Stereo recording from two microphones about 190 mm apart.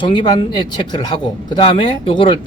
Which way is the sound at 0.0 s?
25° left (ahead or behind).